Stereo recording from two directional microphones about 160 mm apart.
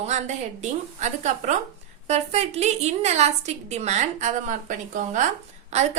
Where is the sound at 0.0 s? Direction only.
45° right (ahead or behind).